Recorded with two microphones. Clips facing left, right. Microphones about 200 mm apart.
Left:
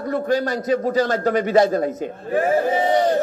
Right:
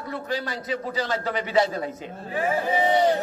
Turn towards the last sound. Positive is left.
turn(degrees=45)  # may be behind; listen again after turning